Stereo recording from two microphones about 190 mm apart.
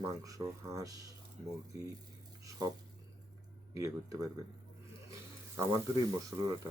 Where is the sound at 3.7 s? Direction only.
15° right (ahead or behind).